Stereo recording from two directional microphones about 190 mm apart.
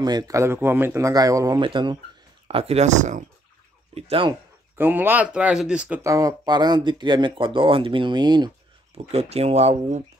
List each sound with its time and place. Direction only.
0.0 s speech: 20° right (ahead or behind); by 3.3 s 40° right (ahead or behind)
3.9 s speech: 25° right (ahead or behind)
4.7 s speech: 10° right (ahead or behind)
6.0 s speech: 20° right (ahead or behind); by 10.0 s 35° right (ahead or behind)